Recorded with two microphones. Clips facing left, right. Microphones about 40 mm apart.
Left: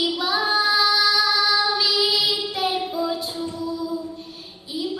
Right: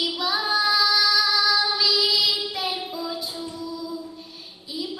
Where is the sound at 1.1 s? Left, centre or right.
Left.